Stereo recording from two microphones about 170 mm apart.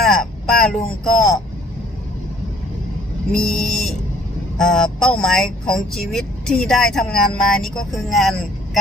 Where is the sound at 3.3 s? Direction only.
5° left (ahead or behind).